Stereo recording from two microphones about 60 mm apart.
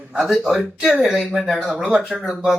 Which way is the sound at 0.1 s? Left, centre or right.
Centre.